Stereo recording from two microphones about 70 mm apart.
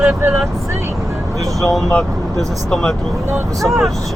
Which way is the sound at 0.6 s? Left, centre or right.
Right.